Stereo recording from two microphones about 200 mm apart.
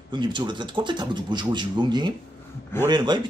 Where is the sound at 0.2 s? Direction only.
25° right (ahead or behind).